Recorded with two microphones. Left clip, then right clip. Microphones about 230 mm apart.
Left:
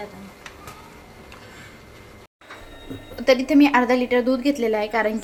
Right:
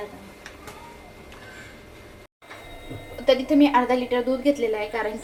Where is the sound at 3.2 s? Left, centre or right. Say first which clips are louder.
Left 2 dB; left.